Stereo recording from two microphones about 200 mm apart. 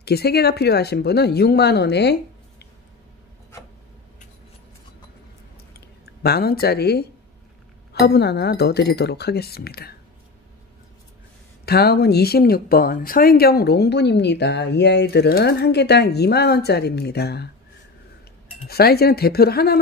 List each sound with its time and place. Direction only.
0.0 s speech: 50° left (ahead or behind)
6.2 s speech: 50° left (ahead or behind)
11.6 s speech: 50° left (ahead or behind)
18.7 s speech: 50° left (ahead or behind)